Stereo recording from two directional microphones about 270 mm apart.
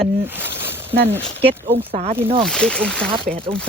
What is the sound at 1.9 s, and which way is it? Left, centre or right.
Speech, right.